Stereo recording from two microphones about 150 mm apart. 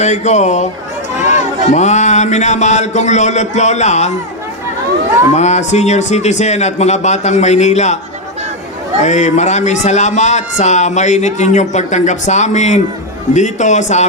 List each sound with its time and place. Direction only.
0.0 s a man's voice: 50° left (ahead or behind)
5.3 s a man's voice: 50° left (ahead or behind)
9.0 s a man's voice: 50° left (ahead or behind)